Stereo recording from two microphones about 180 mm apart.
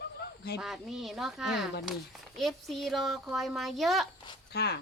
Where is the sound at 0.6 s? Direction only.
Centre (ahead or behind).